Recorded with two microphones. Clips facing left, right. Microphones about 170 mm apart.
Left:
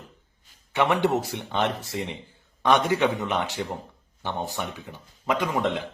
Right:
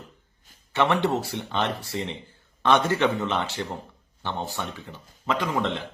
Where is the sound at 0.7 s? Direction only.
15° left (ahead or behind).